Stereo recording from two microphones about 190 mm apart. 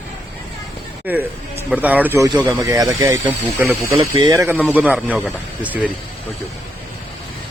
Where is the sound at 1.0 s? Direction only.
10° right (ahead or behind).